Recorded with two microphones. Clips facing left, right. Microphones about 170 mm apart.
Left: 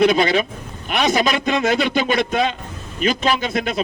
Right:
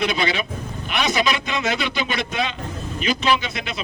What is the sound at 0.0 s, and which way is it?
A man's voice, 45° left (ahead or behind).